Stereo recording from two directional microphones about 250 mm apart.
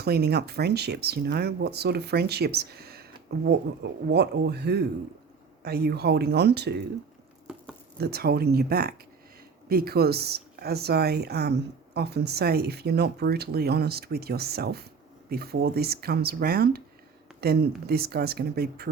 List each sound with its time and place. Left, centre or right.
0.0 s speech: right
7.9 s speech: right